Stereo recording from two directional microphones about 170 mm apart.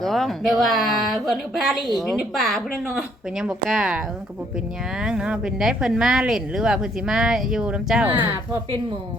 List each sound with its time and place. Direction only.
0.0 s speech: centre (ahead or behind)